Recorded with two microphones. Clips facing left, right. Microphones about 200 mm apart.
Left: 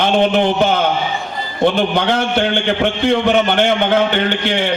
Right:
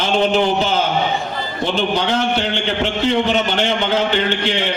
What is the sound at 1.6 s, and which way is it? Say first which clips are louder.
A man's voice: left 5 dB; 55° left (ahead or behind).